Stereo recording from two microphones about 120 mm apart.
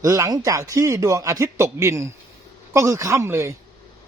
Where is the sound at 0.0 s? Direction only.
30° right (ahead or behind).